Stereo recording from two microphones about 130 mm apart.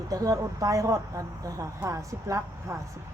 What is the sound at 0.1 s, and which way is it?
A woman's voice, 25° right (ahead or behind).